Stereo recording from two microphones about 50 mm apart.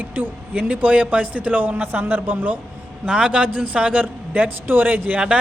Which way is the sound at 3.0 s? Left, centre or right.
Right.